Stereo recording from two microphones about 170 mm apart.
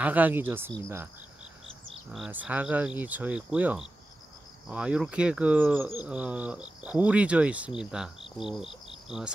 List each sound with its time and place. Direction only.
0.0 s speech: 10° right (ahead or behind)
2.1 s speech: 5° right (ahead or behind)